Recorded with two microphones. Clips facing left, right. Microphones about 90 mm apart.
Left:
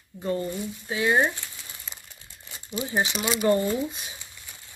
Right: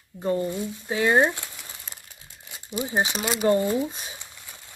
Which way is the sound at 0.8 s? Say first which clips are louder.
Right 2 dB; 40° right (ahead or behind).